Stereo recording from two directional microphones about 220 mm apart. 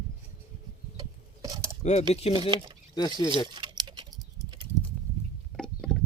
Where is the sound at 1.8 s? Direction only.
30° left (ahead or behind).